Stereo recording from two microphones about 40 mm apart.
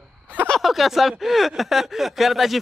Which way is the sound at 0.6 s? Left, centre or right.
Centre.